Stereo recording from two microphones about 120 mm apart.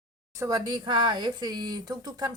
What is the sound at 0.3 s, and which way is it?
Speech, 30° right (ahead or behind).